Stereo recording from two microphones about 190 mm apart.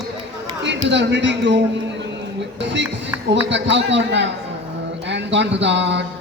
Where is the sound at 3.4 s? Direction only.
70° right (ahead or behind).